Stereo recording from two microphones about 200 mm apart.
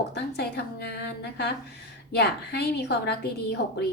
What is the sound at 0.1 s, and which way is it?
A woman's voice, 55° left (ahead or behind).